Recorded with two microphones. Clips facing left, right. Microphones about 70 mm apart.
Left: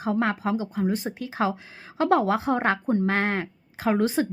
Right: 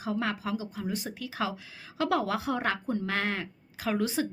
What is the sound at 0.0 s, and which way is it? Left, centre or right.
Speech, left.